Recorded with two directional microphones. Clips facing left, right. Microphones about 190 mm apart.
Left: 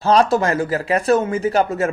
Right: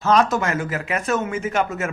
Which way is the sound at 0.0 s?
30° left (ahead or behind).